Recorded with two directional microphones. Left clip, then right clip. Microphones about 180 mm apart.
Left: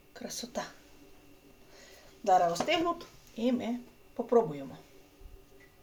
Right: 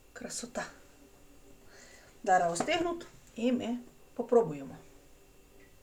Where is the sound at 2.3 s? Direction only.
15° left (ahead or behind).